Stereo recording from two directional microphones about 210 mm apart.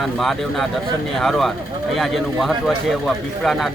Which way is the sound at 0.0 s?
Centre (ahead or behind).